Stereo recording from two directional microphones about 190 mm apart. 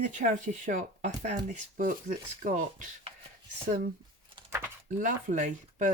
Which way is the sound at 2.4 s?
40° right (ahead or behind).